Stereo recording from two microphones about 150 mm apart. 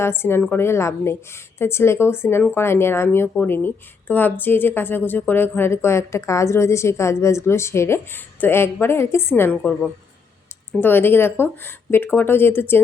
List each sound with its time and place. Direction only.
0.0 s speech: 15° left (ahead or behind)
10.8 s speech: 15° left (ahead or behind)